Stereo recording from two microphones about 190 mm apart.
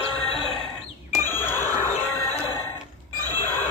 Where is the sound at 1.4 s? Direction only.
10° left (ahead or behind).